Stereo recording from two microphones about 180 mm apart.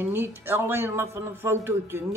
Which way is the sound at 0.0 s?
10° right (ahead or behind).